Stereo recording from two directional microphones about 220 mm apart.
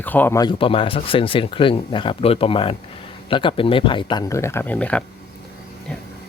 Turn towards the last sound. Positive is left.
turn(degrees=5)  # may be behind; listen again after turning